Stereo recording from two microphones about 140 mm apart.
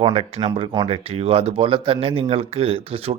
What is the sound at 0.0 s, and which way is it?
Speech, 45° right (ahead or behind).